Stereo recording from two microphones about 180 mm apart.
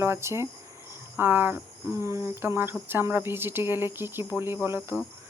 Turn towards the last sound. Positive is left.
turn(degrees=-10)  # may be behind; listen again after turning